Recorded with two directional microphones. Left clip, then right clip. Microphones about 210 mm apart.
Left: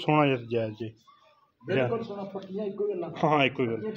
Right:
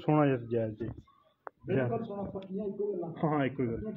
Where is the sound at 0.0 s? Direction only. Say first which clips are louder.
Left 4 dB; 10° left (ahead or behind).